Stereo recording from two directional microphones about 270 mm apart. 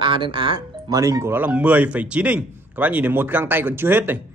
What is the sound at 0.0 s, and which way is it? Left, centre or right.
Speech, centre.